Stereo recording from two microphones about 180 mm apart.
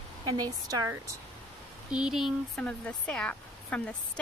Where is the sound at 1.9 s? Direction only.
5° right (ahead or behind).